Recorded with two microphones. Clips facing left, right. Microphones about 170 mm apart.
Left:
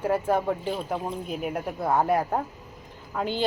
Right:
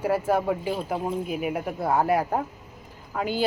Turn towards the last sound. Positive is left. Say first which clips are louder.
# right 1 dB
turn(degrees=-5)  # may be behind; listen again after turning